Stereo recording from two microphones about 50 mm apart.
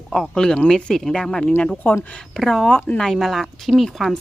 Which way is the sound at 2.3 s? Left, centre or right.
Centre.